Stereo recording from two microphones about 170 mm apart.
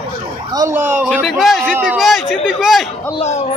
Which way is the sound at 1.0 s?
Centre (ahead or behind).